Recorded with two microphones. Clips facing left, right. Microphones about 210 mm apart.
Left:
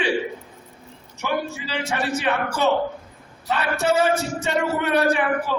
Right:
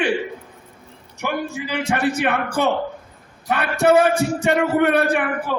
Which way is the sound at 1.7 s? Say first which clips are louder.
Right 4 dB; 55° right (ahead or behind).